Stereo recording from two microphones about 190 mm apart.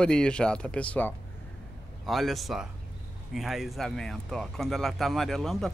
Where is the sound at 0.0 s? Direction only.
5° left (ahead or behind).